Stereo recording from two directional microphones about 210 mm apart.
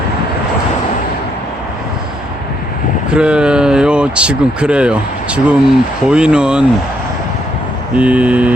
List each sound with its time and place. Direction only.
3.1 s speech: 5° right (ahead or behind)
7.9 s mantra: 5° right (ahead or behind)